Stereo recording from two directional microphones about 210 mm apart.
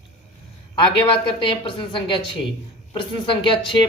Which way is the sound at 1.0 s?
25° left (ahead or behind).